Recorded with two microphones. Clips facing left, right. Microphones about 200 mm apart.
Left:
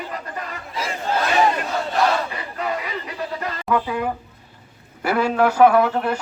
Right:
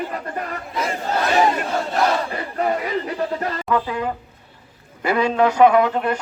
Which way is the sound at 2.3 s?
45° right (ahead or behind).